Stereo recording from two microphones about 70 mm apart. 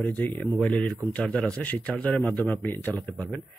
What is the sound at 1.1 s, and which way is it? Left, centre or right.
A man's voice, centre.